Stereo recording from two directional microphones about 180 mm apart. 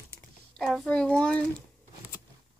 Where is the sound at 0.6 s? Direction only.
Centre (ahead or behind).